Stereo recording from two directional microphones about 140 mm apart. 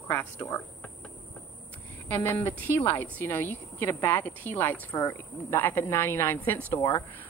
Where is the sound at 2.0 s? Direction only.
20° left (ahead or behind).